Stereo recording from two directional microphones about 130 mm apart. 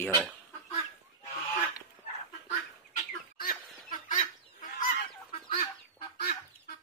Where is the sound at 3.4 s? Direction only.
75° left (ahead or behind).